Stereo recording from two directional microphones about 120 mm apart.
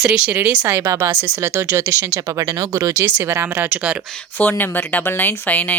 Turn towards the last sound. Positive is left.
turn(degrees=15)  # may be behind; listen again after turning